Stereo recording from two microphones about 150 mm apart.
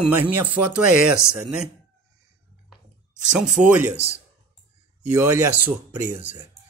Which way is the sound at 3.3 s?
5° right (ahead or behind).